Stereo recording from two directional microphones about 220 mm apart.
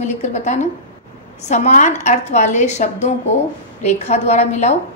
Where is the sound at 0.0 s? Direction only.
30° left (ahead or behind).